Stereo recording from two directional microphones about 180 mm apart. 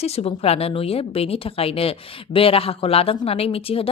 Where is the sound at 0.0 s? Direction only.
35° left (ahead or behind).